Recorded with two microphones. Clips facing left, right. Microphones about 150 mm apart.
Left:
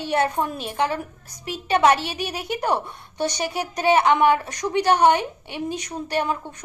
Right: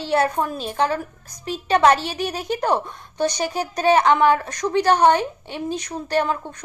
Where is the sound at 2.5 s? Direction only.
40° right (ahead or behind).